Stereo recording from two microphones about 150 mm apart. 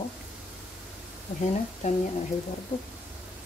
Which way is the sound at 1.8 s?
55° left (ahead or behind).